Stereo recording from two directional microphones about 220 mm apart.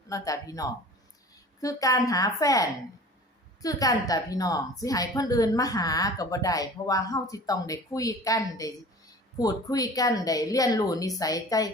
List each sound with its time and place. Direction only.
0.1 s a woman's voice: 15° left (ahead or behind)